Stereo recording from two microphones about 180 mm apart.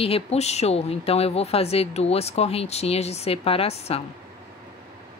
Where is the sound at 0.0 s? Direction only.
35° left (ahead or behind).